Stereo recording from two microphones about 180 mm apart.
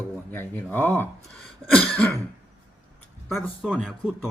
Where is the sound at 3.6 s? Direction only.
5° left (ahead or behind).